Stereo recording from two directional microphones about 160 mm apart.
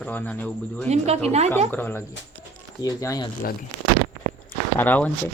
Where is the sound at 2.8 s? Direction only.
20° left (ahead or behind).